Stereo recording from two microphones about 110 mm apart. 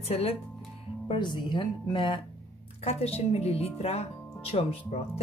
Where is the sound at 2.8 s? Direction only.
65° left (ahead or behind).